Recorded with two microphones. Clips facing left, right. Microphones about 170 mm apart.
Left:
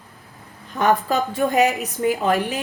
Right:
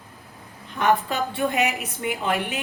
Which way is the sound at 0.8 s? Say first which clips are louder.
Left 3 dB; 40° left (ahead or behind).